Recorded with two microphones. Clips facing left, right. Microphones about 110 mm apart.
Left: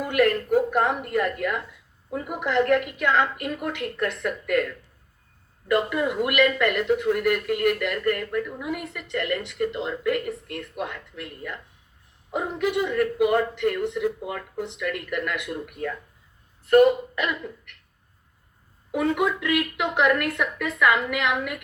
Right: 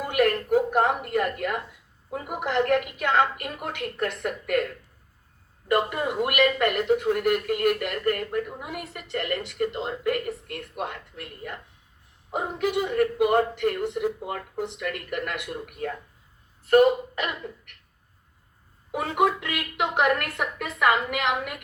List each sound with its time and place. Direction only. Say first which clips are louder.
0.1 s speech: left 1 dB; 50° right (ahead or behind)
5.6 s speech: left 1 dB; 50° right (ahead or behind)
12.9 s speech: right 1 dB; 50° right (ahead or behind)
18.9 s speech: even; 50° right (ahead or behind)